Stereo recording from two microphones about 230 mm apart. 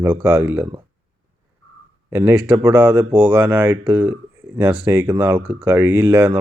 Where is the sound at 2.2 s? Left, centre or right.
Right.